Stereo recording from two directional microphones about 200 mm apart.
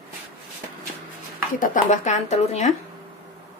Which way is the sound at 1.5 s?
40° left (ahead or behind).